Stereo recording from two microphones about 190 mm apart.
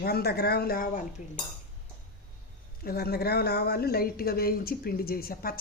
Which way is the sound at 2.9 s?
55° left (ahead or behind).